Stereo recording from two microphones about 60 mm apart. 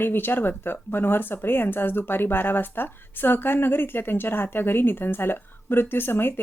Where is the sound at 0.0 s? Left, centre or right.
Left.